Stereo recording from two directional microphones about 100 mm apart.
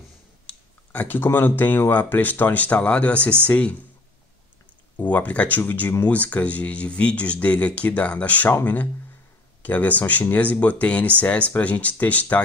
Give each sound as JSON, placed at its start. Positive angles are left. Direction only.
{"t": 0.5, "sound": "speech", "side_deg": 15}
{"t": 4.9, "sound": "speech", "side_deg": 15}